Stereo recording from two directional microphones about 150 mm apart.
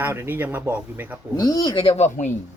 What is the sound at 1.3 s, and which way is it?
Speech, 25° left (ahead or behind).